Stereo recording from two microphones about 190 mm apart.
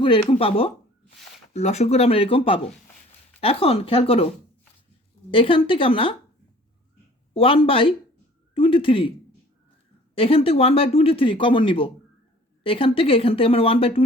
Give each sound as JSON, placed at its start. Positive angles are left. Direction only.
{"t": 0.0, "sound": "speech", "side_deg": 30}
{"t": 5.3, "sound": "speech", "side_deg": 30}
{"t": 7.3, "sound": "speech", "side_deg": 30}
{"t": 10.2, "sound": "speech", "side_deg": 30}